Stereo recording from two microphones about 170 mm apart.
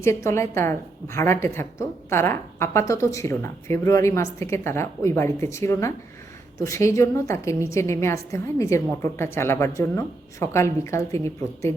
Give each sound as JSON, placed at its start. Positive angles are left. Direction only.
{"t": 0.0, "sound": "a woman's voice", "side_deg": 15}